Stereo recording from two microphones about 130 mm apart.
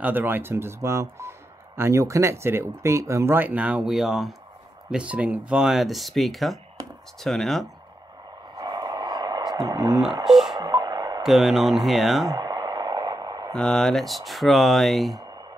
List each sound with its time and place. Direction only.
0.0 s speech: 15° right (ahead or behind); by 7.6 s 5° left (ahead or behind)
8.5 s a sound: 30° right (ahead or behind)
10.2 s speech: 5° right (ahead or behind)
10.5 s radio: 30° right (ahead or behind)
11.2 s speech: centre (ahead or behind)
12.3 s radio: 30° right (ahead or behind)
13.5 s speech: 5° left (ahead or behind)